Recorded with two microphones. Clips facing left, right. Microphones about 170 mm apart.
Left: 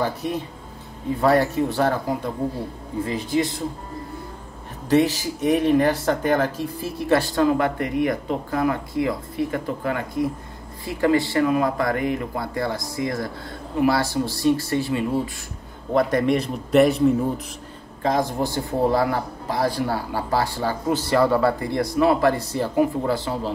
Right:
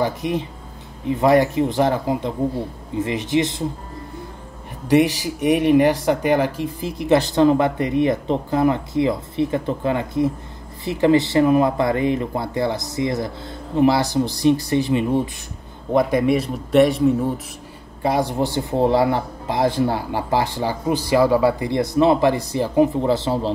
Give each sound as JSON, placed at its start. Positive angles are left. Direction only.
{"t": 0.0, "sound": "speech", "side_deg": -15}
{"t": 4.8, "sound": "a man's voice", "side_deg": -15}
{"t": 18.0, "sound": "speech", "side_deg": -15}